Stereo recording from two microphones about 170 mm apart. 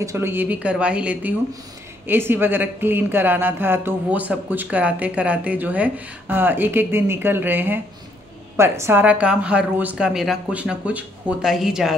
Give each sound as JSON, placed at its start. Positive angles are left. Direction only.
{"t": 0.0, "sound": "speech", "side_deg": -15}